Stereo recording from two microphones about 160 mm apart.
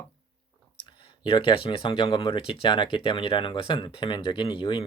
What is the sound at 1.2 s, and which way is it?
Speech, 30° left (ahead or behind).